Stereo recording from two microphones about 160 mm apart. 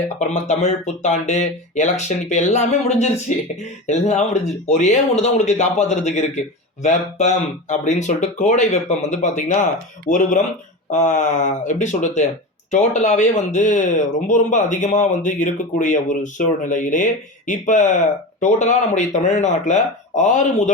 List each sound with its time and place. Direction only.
0.2 s speech: 45° left (ahead or behind)